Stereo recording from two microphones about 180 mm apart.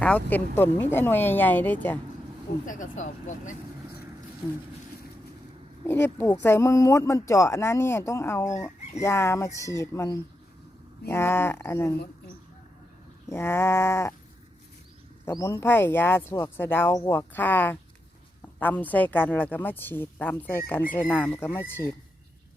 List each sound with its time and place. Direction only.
0.0 s speech: 10° left (ahead or behind)
2.6 s speech: 45° left (ahead or behind)
5.8 s speech: 10° left (ahead or behind)
13.3 s speech: 15° left (ahead or behind)
15.2 s speech: 15° left (ahead or behind)